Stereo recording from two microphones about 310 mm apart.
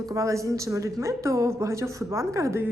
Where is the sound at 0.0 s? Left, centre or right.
Centre.